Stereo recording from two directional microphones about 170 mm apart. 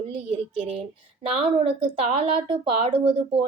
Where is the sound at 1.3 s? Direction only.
35° right (ahead or behind).